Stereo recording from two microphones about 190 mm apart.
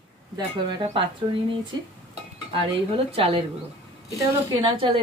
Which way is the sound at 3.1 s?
30° right (ahead or behind).